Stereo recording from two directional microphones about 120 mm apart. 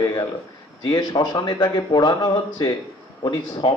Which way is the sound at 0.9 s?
35° left (ahead or behind).